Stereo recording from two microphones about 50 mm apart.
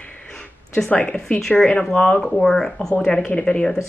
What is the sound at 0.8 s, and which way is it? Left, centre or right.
Speech, left.